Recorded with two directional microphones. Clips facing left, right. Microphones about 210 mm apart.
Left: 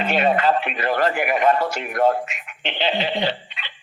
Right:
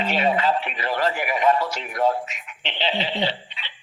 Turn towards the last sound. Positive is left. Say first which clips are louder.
# left 2 dB
turn(degrees=55)  # may be behind; listen again after turning